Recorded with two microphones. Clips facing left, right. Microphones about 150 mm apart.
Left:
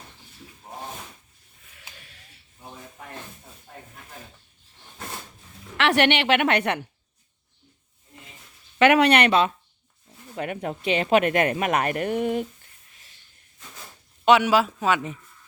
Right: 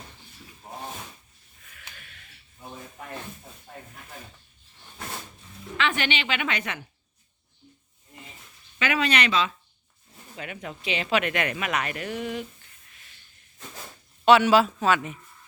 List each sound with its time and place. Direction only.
2.0 s a sound: 30° left (ahead or behind)
5.7 s a woman's voice: 70° left (ahead or behind)
8.8 s speech: 65° left (ahead or behind)
14.3 s speech: 10° left (ahead or behind)